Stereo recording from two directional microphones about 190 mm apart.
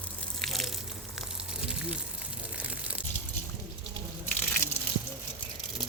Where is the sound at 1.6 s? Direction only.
5° right (ahead or behind).